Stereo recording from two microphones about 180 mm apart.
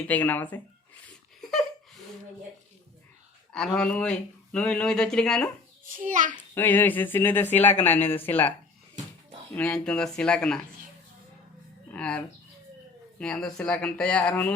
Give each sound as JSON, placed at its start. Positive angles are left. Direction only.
{"t": 0.1, "sound": "speech", "side_deg": 10}
{"t": 1.0, "sound": "a sound", "side_deg": 0}
{"t": 3.5, "sound": "speech", "side_deg": 5}
{"t": 5.8, "sound": "a child's voice", "side_deg": -50}
{"t": 6.5, "sound": "speech", "side_deg": 10}
{"t": 9.6, "sound": "speech", "side_deg": 5}
{"t": 11.9, "sound": "speech", "side_deg": 5}